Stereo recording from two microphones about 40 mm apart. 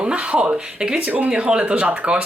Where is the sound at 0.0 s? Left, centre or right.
Right.